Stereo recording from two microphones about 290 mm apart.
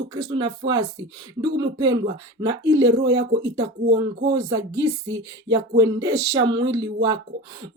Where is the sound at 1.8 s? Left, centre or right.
Centre.